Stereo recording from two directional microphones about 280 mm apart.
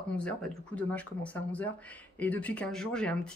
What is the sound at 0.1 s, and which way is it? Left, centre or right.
Speech, centre.